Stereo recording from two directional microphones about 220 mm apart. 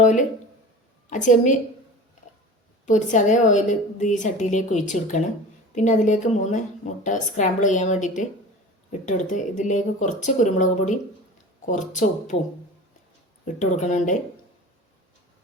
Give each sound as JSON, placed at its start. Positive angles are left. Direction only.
{"t": 0.0, "sound": "a woman's voice", "side_deg": 35}
{"t": 2.8, "sound": "a woman's voice", "side_deg": 35}
{"t": 13.6, "sound": "a woman's voice", "side_deg": 35}